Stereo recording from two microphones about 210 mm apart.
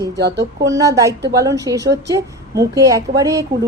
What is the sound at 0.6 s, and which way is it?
A woman's voice, 15° right (ahead or behind).